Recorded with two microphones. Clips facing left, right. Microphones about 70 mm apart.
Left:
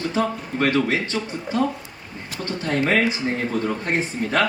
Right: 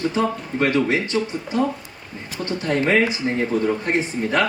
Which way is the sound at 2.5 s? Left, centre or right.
Right.